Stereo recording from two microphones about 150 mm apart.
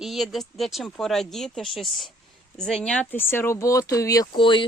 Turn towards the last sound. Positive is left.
turn(degrees=30)  # may be behind; listen again after turning